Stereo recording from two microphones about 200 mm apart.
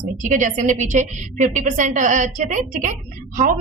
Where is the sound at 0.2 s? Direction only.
40° right (ahead or behind).